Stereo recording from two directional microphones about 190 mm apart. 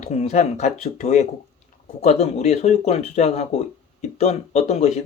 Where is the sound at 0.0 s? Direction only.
35° left (ahead or behind).